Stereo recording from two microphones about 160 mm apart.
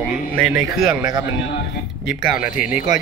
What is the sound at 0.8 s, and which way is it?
Speech, 25° right (ahead or behind).